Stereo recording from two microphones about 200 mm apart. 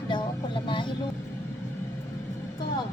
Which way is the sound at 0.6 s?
25° left (ahead or behind).